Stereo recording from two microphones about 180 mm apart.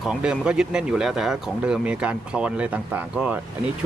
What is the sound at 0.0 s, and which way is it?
Speech, 5° right (ahead or behind).